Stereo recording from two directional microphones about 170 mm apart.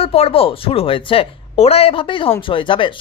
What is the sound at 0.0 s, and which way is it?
Speech, 35° left (ahead or behind).